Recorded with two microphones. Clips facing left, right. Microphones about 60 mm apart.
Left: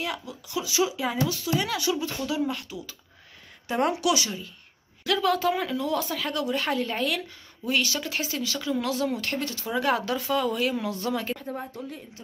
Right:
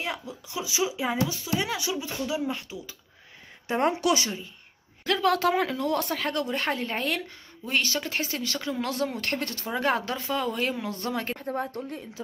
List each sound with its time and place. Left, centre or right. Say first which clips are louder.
0.0 s speech: left 1 dB; right
5.3 s a woman's voice: right 1 dB; right
9.8 s speech: left 1 dB; right
11.5 s a woman's voice: right 4 dB; right